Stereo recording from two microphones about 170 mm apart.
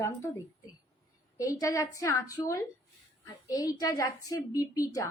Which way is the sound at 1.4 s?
20° left (ahead or behind).